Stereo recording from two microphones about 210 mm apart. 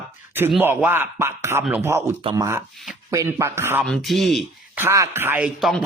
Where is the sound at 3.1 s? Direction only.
15° right (ahead or behind).